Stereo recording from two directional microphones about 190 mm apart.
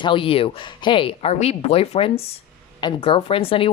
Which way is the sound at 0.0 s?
25° left (ahead or behind).